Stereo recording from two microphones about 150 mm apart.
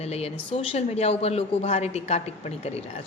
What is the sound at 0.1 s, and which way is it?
A woman's voice, 45° left (ahead or behind).